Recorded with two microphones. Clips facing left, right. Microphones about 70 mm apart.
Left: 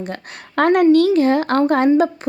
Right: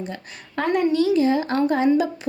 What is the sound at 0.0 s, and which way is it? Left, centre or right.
Speech, left.